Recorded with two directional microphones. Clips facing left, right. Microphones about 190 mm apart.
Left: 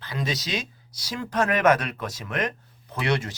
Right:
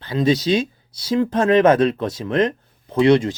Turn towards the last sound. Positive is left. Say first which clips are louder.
# right 12 dB
turn(degrees=-25)  # may be behind; listen again after turning